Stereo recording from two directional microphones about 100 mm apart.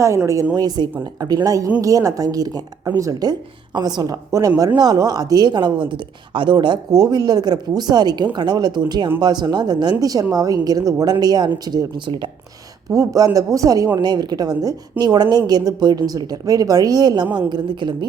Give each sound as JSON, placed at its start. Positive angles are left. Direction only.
{"t": 0.5, "sound": "speech", "side_deg": -40}
{"t": 12.9, "sound": "speech", "side_deg": -35}